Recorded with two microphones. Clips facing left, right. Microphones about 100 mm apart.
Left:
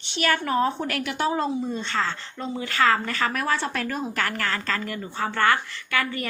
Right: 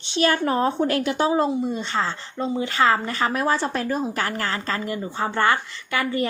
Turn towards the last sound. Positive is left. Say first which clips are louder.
# right 3 dB
turn(degrees=-25)  # may be behind; listen again after turning